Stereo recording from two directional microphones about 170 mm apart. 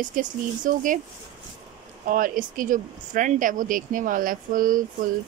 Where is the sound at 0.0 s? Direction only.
50° right (ahead or behind).